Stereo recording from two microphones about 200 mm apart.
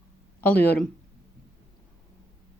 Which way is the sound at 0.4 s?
10° left (ahead or behind).